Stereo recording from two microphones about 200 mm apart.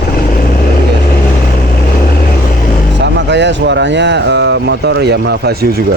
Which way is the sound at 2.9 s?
60° right (ahead or behind).